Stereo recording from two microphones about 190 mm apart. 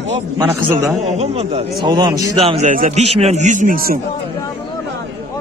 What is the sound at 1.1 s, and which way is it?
A man's voice, 35° right (ahead or behind).